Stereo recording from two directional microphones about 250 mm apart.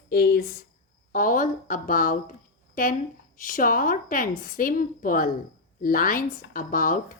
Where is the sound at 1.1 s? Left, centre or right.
Left.